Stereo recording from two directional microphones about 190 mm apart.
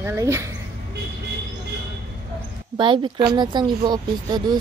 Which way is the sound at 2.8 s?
25° right (ahead or behind).